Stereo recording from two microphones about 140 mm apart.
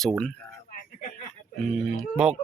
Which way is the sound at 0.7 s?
70° left (ahead or behind).